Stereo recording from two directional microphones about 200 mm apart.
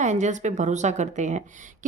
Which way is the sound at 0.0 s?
35° right (ahead or behind).